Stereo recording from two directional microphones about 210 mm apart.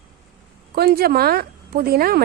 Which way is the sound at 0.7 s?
50° right (ahead or behind).